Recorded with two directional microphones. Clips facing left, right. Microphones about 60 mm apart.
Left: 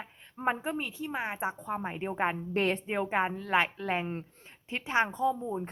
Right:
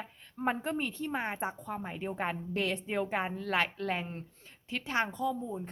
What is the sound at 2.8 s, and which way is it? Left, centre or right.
Speech, left.